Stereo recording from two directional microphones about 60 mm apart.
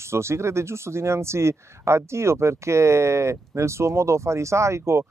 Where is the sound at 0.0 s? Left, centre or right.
Right.